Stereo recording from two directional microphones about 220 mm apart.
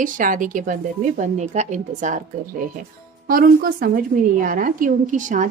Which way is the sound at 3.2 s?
40° right (ahead or behind).